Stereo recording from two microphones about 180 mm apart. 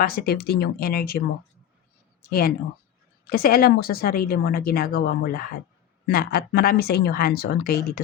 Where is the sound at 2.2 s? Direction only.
55° left (ahead or behind).